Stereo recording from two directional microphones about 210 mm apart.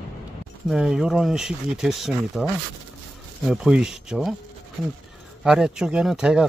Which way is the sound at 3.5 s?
Centre (ahead or behind).